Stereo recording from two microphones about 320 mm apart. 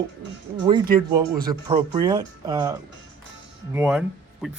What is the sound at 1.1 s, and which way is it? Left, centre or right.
Speech, centre.